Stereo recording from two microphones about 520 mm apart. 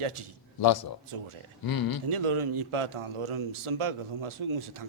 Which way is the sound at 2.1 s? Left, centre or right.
Right.